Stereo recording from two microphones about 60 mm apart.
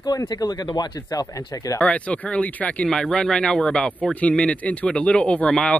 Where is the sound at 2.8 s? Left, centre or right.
Centre.